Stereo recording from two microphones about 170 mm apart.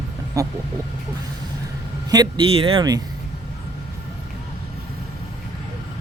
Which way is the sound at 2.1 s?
25° right (ahead or behind).